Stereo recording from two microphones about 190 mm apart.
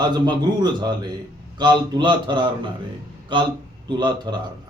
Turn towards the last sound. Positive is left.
turn(degrees=-25)  # may be behind; listen again after turning